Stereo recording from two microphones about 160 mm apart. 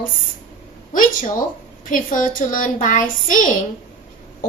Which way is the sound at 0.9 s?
55° left (ahead or behind).